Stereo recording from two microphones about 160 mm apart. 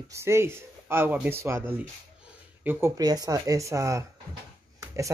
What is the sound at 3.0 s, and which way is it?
Speech, 25° right (ahead or behind).